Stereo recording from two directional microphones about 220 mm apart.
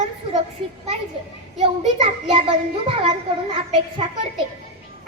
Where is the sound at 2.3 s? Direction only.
25° right (ahead or behind).